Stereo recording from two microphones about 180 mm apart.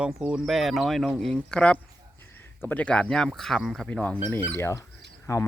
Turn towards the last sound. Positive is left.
turn(degrees=15)  # may be behind; listen again after turning